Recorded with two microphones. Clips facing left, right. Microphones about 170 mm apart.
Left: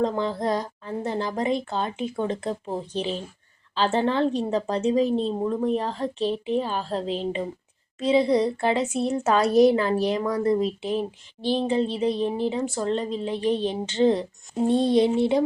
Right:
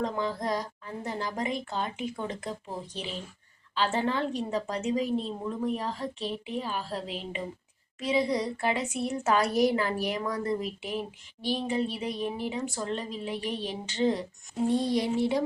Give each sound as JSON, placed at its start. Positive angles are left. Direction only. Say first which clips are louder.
{"t": 0.0, "sound": "a woman's voice", "louder": "left 6 dB", "side_deg": 30}